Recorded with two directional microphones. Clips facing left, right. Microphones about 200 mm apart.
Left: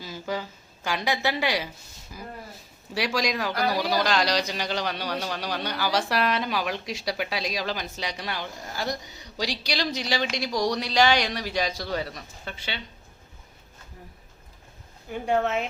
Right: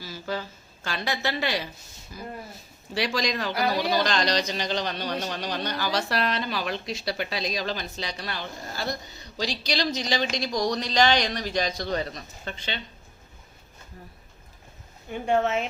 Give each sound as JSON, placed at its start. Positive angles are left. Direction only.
{"t": 0.0, "sound": "a sound", "side_deg": 15}
{"t": 0.9, "sound": "speech", "side_deg": 15}
{"t": 2.9, "sound": "speech", "side_deg": 10}
{"t": 15.1, "sound": "speech", "side_deg": 0}